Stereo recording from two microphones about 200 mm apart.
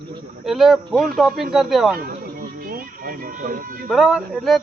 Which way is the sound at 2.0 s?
45° right (ahead or behind).